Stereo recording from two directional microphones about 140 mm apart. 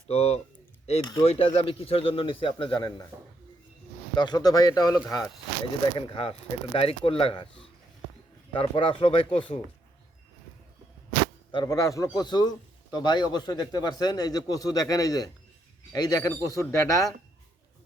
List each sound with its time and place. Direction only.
0.1 s speech: 50° left (ahead or behind); by 2.9 s 35° left (ahead or behind)
3.1 s speech: 20° right (ahead or behind)
4.1 s a man's voice: 30° left (ahead or behind)
5.8 s speech: 40° left (ahead or behind)
11.5 s a man's voice: 25° left (ahead or behind)